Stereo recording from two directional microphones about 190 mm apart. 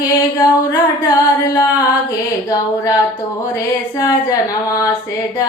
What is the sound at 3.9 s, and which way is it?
Speech, 20° left (ahead or behind).